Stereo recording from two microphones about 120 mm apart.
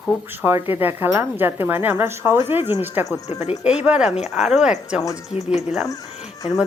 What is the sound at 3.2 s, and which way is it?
Speech, 65° left (ahead or behind).